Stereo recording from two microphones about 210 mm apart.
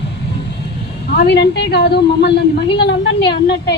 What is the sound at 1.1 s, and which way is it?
A woman's voice, 50° left (ahead or behind).